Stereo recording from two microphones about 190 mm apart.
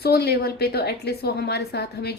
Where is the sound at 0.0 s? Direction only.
55° left (ahead or behind).